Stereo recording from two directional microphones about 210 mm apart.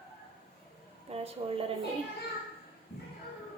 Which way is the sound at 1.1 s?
30° right (ahead or behind).